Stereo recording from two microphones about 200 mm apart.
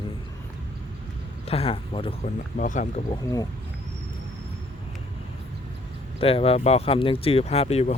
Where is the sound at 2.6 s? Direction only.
40° left (ahead or behind).